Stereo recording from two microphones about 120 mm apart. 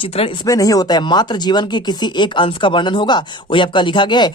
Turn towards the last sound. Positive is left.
turn(degrees=40)  # may be behind; listen again after turning